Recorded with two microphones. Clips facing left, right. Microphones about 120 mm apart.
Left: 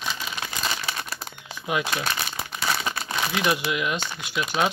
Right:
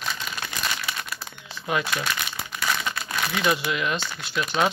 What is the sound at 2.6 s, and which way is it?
Crumpling, 30° left (ahead or behind).